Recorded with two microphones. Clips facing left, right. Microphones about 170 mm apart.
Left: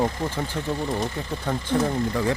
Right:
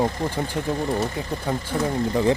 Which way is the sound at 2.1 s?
20° right (ahead or behind).